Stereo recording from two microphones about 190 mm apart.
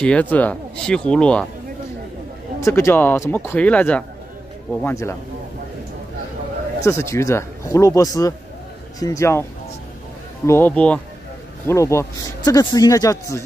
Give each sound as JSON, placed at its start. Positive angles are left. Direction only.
{"t": 0.0, "sound": "speech", "side_deg": 5}
{"t": 2.6, "sound": "speech", "side_deg": 15}
{"t": 6.8, "sound": "speech", "side_deg": 15}